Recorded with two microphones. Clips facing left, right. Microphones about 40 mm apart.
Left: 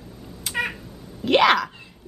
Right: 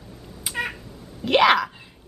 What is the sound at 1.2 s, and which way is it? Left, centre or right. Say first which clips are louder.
Speech: even; centre.